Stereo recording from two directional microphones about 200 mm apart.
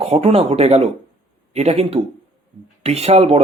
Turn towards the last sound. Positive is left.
turn(degrees=-30)  # may be behind; listen again after turning